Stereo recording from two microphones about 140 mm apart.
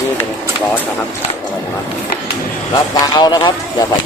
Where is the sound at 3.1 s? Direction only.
30° left (ahead or behind).